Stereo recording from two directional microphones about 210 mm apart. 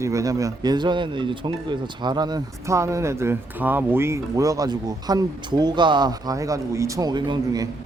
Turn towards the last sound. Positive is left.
turn(degrees=-20)  # may be behind; listen again after turning